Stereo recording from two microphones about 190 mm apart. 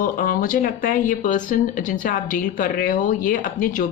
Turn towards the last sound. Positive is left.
turn(degrees=45)  # may be behind; listen again after turning